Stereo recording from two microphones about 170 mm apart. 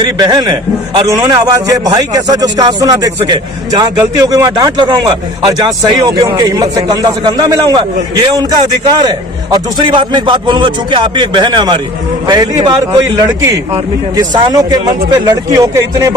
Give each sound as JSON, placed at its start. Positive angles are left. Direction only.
{"t": 0.0, "sound": "a man's voice", "side_deg": -25}